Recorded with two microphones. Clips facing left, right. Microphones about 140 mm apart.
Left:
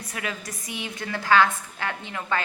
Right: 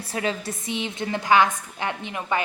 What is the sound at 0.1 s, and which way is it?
A woman's voice, 30° right (ahead or behind).